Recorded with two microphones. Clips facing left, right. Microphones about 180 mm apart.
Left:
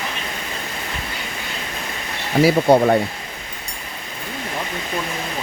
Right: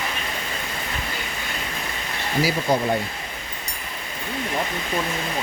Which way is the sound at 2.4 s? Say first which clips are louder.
Left 9 dB; 65° left (ahead or behind).